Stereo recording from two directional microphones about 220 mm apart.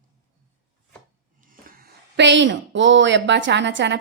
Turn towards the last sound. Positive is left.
turn(degrees=-55)  # may be behind; listen again after turning